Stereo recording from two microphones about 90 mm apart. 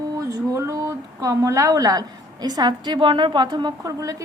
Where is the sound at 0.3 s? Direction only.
35° right (ahead or behind); by 3.8 s 55° right (ahead or behind).